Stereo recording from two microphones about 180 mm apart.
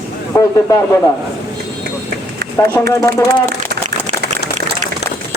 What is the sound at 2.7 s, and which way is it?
Speech, 15° left (ahead or behind).